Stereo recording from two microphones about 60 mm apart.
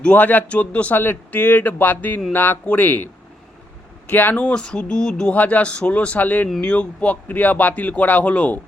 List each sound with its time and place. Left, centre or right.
0.0 s speech: left
4.5 s speech: centre